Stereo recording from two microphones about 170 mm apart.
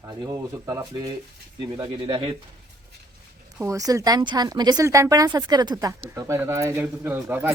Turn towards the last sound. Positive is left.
turn(degrees=-15)  # may be behind; listen again after turning